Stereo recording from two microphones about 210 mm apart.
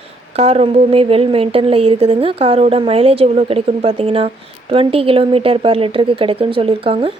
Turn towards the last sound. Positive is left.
turn(degrees=-25)  # may be behind; listen again after turning